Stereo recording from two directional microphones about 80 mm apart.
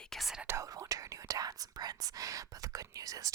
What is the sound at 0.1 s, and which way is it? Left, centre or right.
Whispering, centre.